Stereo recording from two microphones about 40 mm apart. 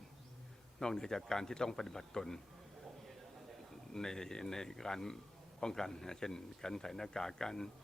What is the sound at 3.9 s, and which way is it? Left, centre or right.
Speech, centre.